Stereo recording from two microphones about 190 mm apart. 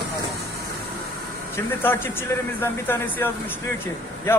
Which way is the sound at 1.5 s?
10° left (ahead or behind).